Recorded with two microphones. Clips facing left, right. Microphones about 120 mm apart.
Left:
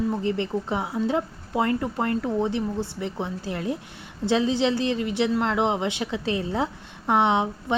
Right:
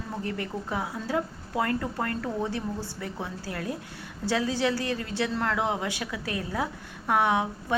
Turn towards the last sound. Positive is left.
turn(degrees=20)  # may be behind; listen again after turning